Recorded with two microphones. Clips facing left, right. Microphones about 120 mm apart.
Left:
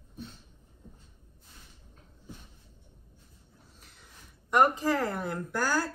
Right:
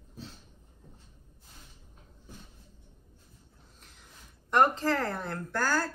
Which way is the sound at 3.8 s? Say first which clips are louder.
Right 1 dB; 5° left (ahead or behind).